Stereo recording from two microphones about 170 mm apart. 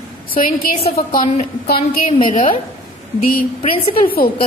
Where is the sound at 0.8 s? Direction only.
35° left (ahead or behind).